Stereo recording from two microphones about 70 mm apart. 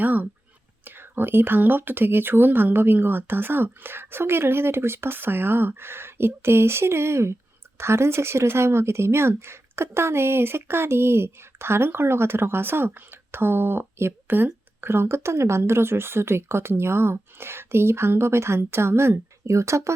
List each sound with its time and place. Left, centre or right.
0.0 s speech: right